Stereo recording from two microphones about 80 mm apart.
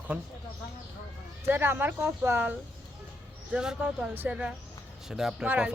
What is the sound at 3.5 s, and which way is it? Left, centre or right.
Speech, centre.